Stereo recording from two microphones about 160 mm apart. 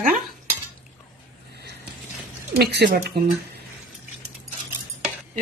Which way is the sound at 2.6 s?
90° right.